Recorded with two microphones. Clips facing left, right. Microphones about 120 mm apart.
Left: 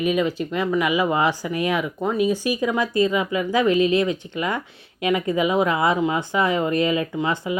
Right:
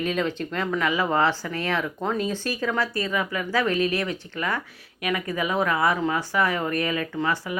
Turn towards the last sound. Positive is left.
turn(degrees=20)  # may be behind; listen again after turning